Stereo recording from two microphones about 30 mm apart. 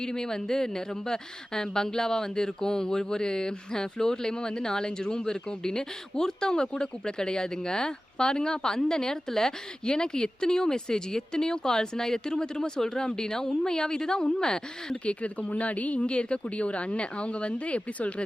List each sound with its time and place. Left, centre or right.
0.0 s speech: left
15.0 s speech: left
16.1 s speech: left